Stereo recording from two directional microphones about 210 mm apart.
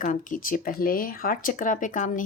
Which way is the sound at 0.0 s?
40° left (ahead or behind).